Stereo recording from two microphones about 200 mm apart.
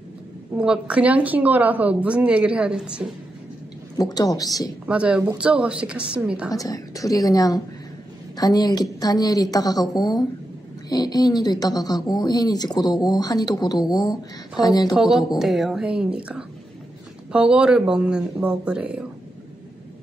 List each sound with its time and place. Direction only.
0.6 s a woman's voice: 5° right (ahead or behind)
4.0 s speech: 20° left (ahead or behind)
4.8 s a woman's voice: 5° right (ahead or behind)
6.5 s a woman's voice: 15° left (ahead or behind)
15.0 s a woman's voice: centre (ahead or behind)